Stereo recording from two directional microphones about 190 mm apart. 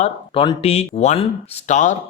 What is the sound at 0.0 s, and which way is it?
Speech, 30° left (ahead or behind).